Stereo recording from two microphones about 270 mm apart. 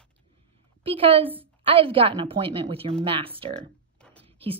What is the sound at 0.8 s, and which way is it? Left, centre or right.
Speech, centre.